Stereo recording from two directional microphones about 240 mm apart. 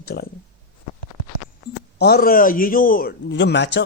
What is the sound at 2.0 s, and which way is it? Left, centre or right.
Speech, left.